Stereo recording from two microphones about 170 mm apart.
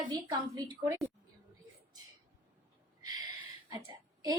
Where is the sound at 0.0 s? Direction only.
25° right (ahead or behind).